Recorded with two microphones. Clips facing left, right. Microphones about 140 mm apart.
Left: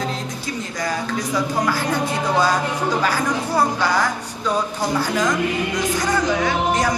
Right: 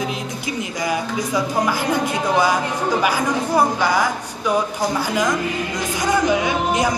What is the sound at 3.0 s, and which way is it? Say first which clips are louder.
Speech: right 1 dB; 15° right (ahead or behind).